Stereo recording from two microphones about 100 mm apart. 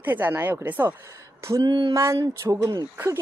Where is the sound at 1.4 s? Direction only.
30° right (ahead or behind).